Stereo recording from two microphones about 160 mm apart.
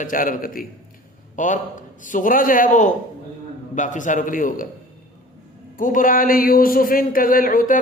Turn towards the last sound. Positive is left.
turn(degrees=60)  # may be behind; listen again after turning